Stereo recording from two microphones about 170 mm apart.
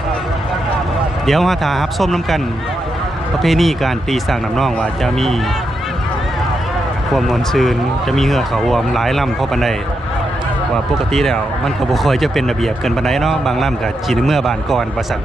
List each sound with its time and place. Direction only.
1.3 s speech: centre (ahead or behind)
3.4 s speech: centre (ahead or behind)
7.1 s speech: centre (ahead or behind)
10.9 s speech: centre (ahead or behind)